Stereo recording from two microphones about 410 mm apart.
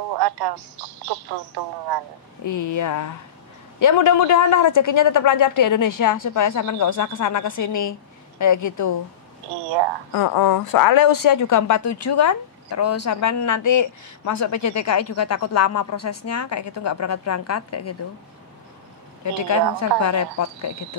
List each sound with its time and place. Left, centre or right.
0.2 s speech: right
2.4 s speech: left
10.1 s speech: left
19.2 s speech: left